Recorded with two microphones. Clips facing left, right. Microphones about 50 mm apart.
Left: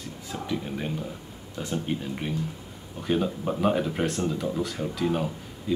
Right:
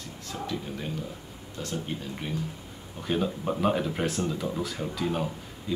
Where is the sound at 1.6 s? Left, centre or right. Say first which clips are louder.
Left 4 dB; centre.